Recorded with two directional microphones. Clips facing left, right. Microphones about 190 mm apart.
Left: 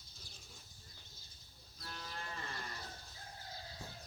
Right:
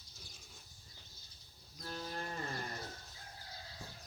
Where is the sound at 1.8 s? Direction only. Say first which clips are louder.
Right 6 dB; 40° right (ahead or behind).